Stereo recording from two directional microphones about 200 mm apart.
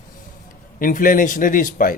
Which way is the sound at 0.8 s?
45° left (ahead or behind).